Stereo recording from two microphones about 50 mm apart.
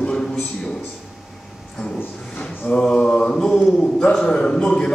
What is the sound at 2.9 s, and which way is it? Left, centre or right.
A man's voice, left.